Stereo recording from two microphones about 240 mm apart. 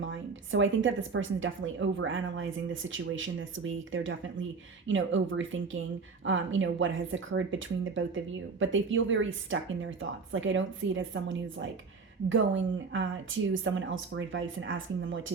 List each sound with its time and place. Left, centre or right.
0.0 s speech: right